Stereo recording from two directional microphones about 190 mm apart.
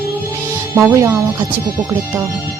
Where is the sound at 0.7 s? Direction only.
15° right (ahead or behind).